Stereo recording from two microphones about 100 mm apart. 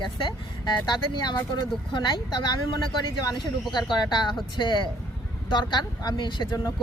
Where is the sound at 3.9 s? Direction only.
50° left (ahead or behind).